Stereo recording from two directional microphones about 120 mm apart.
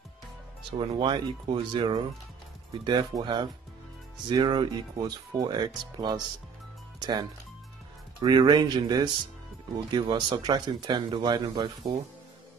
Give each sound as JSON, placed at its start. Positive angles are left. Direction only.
{"t": 0.7, "sound": "speech", "side_deg": -45}